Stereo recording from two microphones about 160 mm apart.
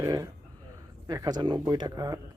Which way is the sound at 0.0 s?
20° right (ahead or behind).